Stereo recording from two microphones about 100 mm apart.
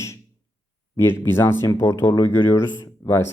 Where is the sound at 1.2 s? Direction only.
25° left (ahead or behind).